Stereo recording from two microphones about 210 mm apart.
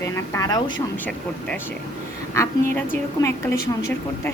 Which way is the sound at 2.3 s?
10° left (ahead or behind).